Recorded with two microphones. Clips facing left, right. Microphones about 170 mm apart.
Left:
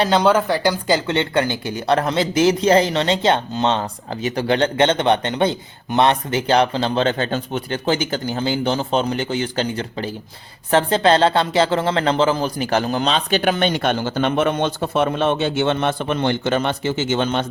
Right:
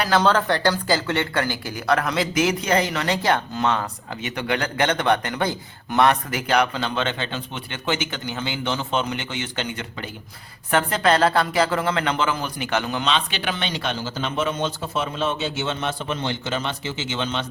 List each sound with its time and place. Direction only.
0.0 s speech: 20° left (ahead or behind); by 17.4 s 50° left (ahead or behind)